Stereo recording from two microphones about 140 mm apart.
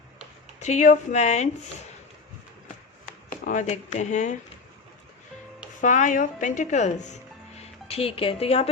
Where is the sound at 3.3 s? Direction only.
70° left (ahead or behind).